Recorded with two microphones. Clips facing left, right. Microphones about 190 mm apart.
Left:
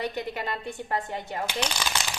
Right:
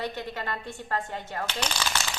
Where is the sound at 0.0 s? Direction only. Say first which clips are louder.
Left 2 dB; 15° left (ahead or behind).